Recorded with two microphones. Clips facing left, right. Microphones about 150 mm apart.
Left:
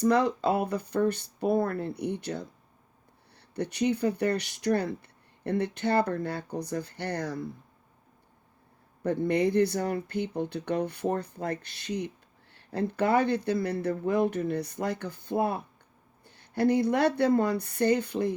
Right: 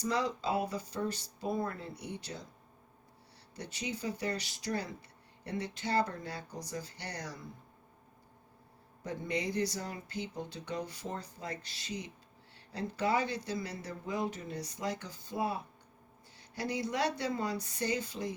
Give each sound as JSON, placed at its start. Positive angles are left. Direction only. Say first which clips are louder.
{"t": 0.0, "sound": "speech", "louder": "left 9 dB", "side_deg": 60}
{"t": 3.5, "sound": "speech", "louder": "left 13 dB", "side_deg": 60}
{"t": 9.0, "sound": "speech", "louder": "left 11 dB", "side_deg": 55}